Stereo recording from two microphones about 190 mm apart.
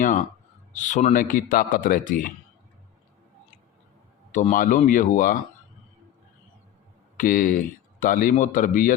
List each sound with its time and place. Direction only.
0.0 s a man's voice: 45° left (ahead or behind)
4.3 s a man's voice: 40° left (ahead or behind)
7.2 s a man's voice: 45° left (ahead or behind)